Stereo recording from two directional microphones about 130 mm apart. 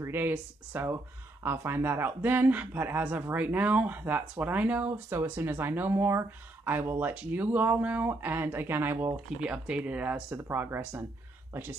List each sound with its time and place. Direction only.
0.0 s speech: 15° right (ahead or behind)